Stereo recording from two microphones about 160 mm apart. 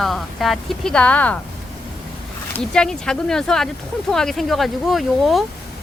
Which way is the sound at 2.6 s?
5° left (ahead or behind).